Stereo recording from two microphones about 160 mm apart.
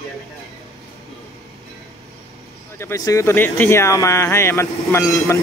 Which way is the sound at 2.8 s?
20° left (ahead or behind).